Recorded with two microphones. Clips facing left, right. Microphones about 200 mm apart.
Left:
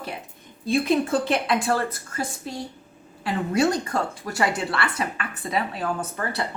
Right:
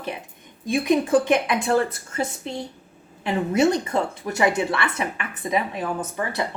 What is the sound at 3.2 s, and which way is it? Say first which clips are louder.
A woman's voice: right 2 dB; 20° right (ahead or behind).